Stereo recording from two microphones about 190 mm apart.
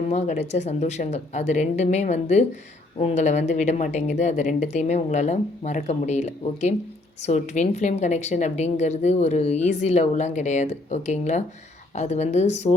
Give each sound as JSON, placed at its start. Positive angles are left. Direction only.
{"t": 0.1, "sound": "a woman's voice", "side_deg": 35}